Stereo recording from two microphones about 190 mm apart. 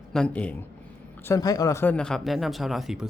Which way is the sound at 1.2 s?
15° left (ahead or behind).